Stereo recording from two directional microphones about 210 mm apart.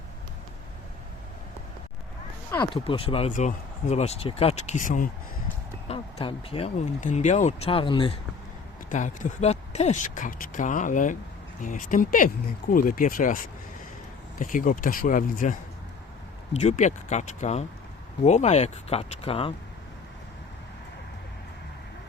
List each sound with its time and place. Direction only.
2.8 s speech: 25° left (ahead or behind)
5.9 s speech: 30° left (ahead or behind)
8.9 s speech: 35° left (ahead or behind)
16.6 s speech: 30° left (ahead or behind)